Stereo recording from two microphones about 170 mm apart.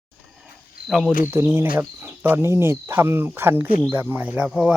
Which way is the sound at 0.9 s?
Centre (ahead or behind).